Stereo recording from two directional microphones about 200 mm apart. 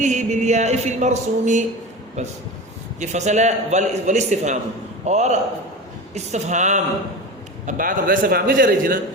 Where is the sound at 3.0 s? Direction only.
35° right (ahead or behind).